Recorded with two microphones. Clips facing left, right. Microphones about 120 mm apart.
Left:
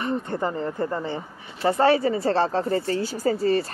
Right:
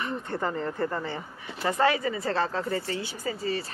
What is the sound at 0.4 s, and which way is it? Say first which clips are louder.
Speech: left 3 dB; 20° left (ahead or behind).